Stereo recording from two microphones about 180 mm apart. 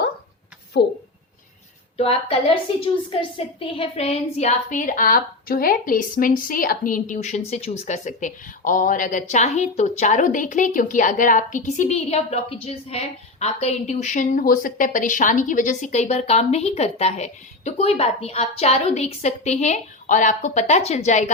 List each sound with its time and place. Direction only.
0.7 s speech: 75° left (ahead or behind)
2.0 s speech: 30° left (ahead or behind)